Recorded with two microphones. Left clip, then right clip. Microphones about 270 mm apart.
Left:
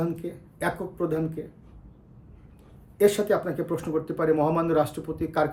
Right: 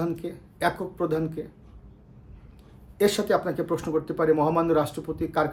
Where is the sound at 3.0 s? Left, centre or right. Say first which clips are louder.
Left 1 dB; centre.